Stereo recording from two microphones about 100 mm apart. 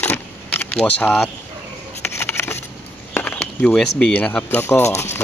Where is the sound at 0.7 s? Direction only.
15° left (ahead or behind).